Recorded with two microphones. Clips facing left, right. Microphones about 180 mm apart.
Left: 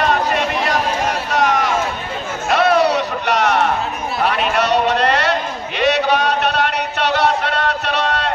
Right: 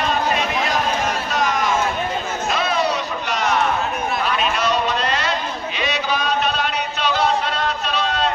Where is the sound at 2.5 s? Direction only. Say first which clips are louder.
Left 8 dB; 70° left (ahead or behind).